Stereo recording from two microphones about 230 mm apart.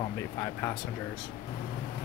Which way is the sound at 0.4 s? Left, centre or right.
Centre.